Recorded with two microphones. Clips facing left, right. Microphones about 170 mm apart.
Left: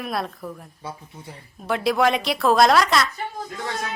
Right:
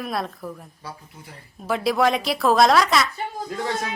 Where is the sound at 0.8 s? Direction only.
25° left (ahead or behind).